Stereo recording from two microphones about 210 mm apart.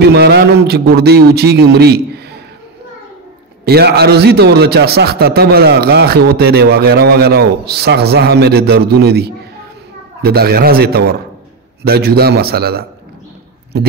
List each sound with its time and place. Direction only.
0.1 s a man's voice: 50° right (ahead or behind)
3.6 s a man's voice: 50° right (ahead or behind)